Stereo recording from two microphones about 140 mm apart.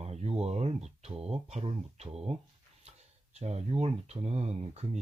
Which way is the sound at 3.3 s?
50° right (ahead or behind).